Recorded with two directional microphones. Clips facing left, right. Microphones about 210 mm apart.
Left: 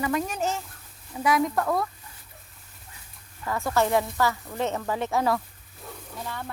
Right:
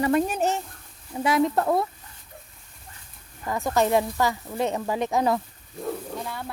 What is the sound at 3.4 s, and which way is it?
Speech, 15° right (ahead or behind).